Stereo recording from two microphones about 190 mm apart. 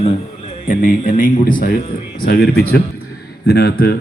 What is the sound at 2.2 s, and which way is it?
A man's voice, 55° left (ahead or behind).